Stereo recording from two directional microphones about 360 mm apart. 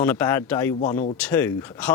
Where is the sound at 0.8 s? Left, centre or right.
Left.